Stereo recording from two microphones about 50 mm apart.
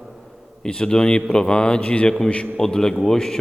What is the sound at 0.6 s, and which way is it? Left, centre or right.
A man's voice, centre.